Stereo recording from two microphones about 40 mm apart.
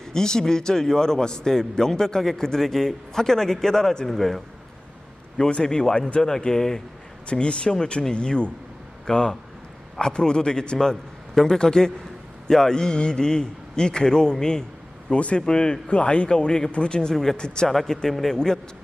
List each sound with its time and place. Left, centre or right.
0.0 s a man's voice: centre
5.4 s a man's voice: left
7.3 s a man's voice: left
15.1 s speech: left
16.5 s speech: centre
17.7 s a man's voice: centre